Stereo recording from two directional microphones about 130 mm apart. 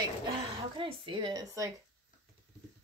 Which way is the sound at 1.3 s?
25° right (ahead or behind).